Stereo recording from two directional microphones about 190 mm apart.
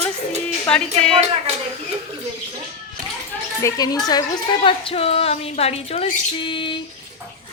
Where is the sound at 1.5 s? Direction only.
35° right (ahead or behind).